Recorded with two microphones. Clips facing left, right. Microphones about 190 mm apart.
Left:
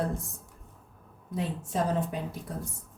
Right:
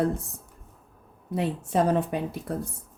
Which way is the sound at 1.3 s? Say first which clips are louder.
Right 6 dB; 65° right (ahead or behind).